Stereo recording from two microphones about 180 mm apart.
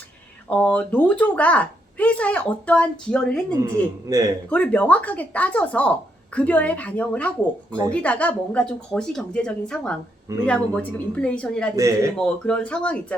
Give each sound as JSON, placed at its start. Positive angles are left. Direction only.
{"t": 0.5, "sound": "a woman's voice", "side_deg": 5}
{"t": 4.1, "sound": "a man's voice", "side_deg": -20}
{"t": 4.4, "sound": "a woman's voice", "side_deg": 10}
{"t": 11.8, "sound": "speech", "side_deg": -20}
{"t": 12.1, "sound": "speech", "side_deg": 5}